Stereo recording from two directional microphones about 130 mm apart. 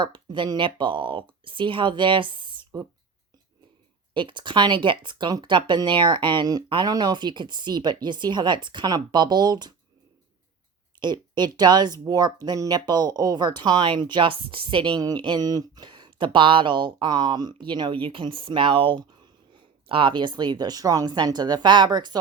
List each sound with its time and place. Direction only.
0.0 s speech: 40° right (ahead or behind)
4.1 s speech: 40° right (ahead or behind)
11.0 s speech: 35° right (ahead or behind)